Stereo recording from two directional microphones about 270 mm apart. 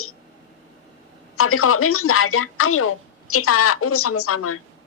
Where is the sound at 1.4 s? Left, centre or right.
Left.